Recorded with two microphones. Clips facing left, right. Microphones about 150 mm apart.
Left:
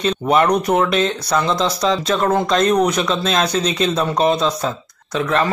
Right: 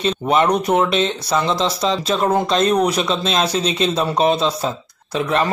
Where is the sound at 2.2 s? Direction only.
15° right (ahead or behind).